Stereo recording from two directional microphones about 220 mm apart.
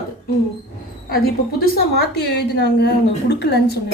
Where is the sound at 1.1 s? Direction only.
45° left (ahead or behind).